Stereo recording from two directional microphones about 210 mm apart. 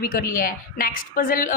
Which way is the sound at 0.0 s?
45° left (ahead or behind).